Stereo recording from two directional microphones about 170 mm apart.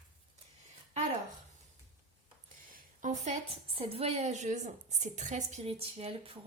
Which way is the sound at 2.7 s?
45° right (ahead or behind).